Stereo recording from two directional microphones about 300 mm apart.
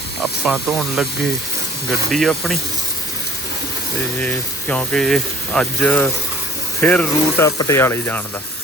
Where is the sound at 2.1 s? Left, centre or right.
Centre.